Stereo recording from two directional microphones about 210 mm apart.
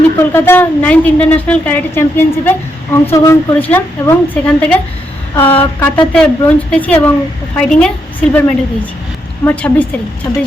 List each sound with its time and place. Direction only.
0.2 s a woman's voice: 10° left (ahead or behind)
5.3 s speech: 25° left (ahead or behind)
5.8 s a woman's voice: 10° left (ahead or behind)